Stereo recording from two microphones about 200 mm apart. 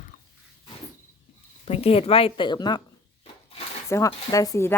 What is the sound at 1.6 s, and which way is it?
A woman's voice, 30° left (ahead or behind).